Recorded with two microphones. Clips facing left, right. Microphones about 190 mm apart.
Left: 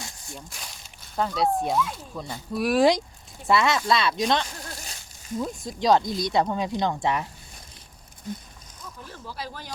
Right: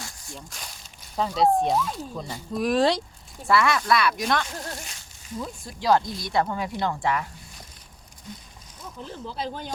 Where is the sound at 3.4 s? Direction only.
20° left (ahead or behind).